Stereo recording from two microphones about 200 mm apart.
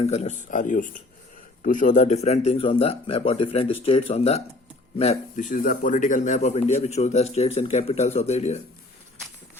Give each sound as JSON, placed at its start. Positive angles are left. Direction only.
{"t": 0.0, "sound": "speech", "side_deg": 35}